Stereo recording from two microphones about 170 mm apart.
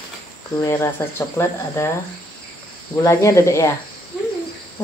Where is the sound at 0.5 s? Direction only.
15° left (ahead or behind).